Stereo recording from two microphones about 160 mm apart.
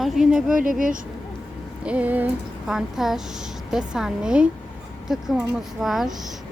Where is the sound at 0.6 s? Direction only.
55° right (ahead or behind).